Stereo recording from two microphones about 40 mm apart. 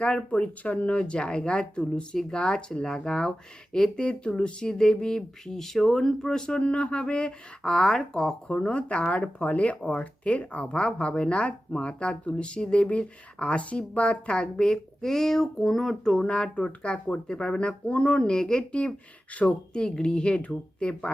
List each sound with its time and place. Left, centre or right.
0.3 s speech: left
0.9 s speech: left
6.6 s speech: left; by 8.5 s centre
8.6 s speech: left; by 16.2 s centre
16.2 s speech: left
18.7 s speech: left
19.5 s speech: centre